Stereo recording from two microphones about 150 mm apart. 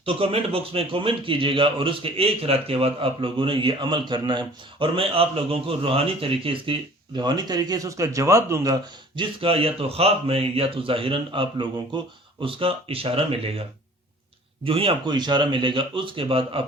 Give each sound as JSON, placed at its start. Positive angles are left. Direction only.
{"t": 0.0, "sound": "a man's voice", "side_deg": -40}
{"t": 9.4, "sound": "a man's voice", "side_deg": -40}